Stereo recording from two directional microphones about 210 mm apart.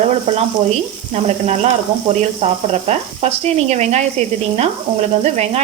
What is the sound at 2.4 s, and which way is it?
Speech, 30° right (ahead or behind).